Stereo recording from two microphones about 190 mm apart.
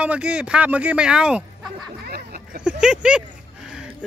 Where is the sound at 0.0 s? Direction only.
5° right (ahead or behind).